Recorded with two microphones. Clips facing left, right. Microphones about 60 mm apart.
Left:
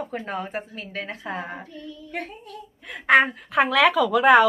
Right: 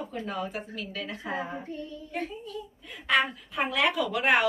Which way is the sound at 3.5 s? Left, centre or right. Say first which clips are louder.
Left 9 dB; left.